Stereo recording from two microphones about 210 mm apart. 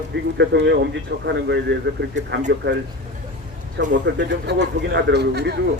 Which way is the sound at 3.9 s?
55° right (ahead or behind).